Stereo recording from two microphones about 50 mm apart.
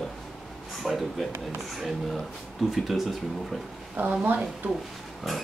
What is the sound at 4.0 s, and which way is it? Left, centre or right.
Speech, right.